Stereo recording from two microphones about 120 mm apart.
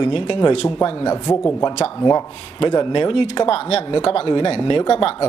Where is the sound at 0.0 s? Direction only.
40° left (ahead or behind).